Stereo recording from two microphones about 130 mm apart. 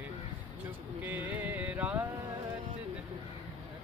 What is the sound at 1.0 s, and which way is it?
Music, 10° right (ahead or behind).